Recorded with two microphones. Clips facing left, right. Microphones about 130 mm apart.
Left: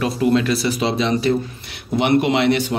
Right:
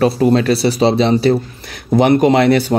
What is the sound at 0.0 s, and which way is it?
Speech, 35° right (ahead or behind).